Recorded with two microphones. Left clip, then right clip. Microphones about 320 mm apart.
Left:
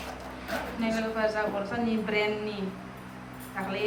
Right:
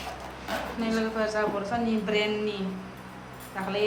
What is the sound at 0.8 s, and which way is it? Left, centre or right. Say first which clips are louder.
A woman's voice: left 1 dB; centre.